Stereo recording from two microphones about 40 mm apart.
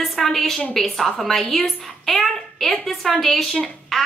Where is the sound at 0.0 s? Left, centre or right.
Centre.